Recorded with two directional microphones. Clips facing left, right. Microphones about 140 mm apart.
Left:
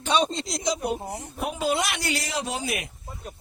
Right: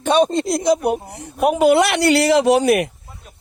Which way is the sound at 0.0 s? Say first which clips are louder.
Right 9 dB; 55° right (ahead or behind).